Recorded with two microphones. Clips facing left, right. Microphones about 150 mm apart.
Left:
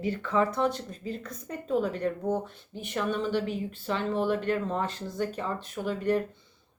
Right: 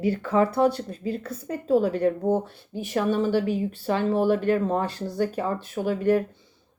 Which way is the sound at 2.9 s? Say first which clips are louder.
Right 6 dB; 40° right (ahead or behind).